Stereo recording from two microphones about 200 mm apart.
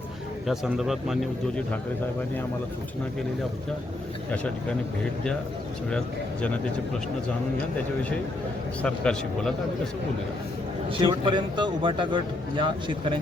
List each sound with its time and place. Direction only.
0.4 s speech: centre (ahead or behind)
8.8 s speech: 5° left (ahead or behind)
10.8 s a man's voice: 25° right (ahead or behind)